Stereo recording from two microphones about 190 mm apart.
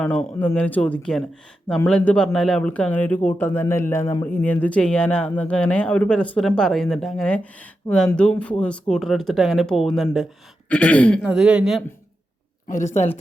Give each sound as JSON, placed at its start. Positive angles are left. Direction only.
{"t": 0.0, "sound": "speech", "side_deg": 5}
{"t": 11.3, "sound": "speech", "side_deg": -5}
{"t": 12.6, "sound": "a woman's voice", "side_deg": 40}